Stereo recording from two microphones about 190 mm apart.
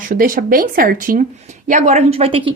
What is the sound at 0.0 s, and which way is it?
A woman's voice, 45° right (ahead or behind).